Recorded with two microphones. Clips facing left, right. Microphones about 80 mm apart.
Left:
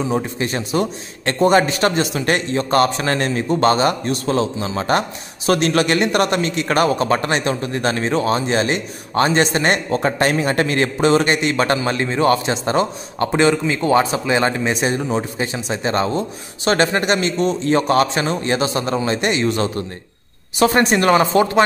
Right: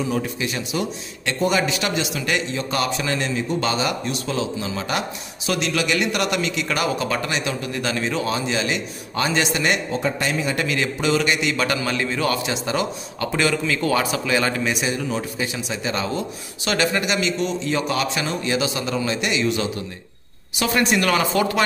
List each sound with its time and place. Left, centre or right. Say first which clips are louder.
0.1 s a man's voice: left 4 dB; left